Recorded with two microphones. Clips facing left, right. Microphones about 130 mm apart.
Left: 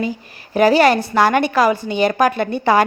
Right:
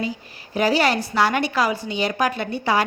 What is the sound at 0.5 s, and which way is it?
A woman's voice, 55° left (ahead or behind).